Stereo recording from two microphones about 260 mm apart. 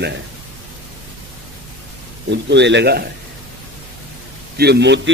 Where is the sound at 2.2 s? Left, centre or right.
Right.